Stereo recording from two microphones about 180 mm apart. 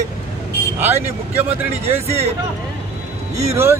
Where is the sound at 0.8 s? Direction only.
15° right (ahead or behind).